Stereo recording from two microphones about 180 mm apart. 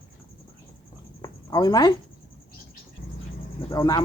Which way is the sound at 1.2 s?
20° left (ahead or behind).